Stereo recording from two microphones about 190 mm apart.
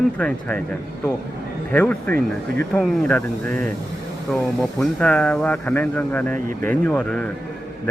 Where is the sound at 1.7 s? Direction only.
10° left (ahead or behind).